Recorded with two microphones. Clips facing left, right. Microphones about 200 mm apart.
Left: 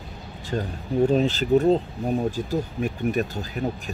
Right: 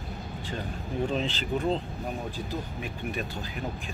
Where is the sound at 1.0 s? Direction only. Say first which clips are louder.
Left 10 dB; 45° left (ahead or behind).